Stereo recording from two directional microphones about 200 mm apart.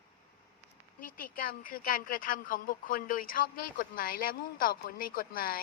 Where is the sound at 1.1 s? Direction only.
45° left (ahead or behind).